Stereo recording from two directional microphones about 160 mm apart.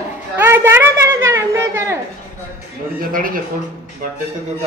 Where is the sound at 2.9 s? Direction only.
65° right (ahead or behind).